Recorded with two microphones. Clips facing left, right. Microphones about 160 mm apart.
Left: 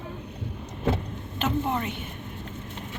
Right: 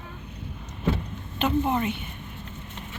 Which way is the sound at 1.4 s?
5° right (ahead or behind).